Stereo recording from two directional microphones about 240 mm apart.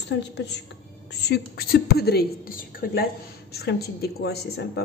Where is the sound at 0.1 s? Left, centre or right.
Left.